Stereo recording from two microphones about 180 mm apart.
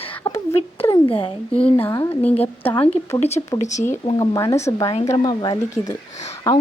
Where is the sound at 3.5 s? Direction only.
40° left (ahead or behind).